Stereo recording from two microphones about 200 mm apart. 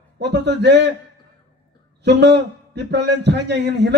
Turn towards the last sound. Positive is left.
turn(degrees=-60)  # may be behind; listen again after turning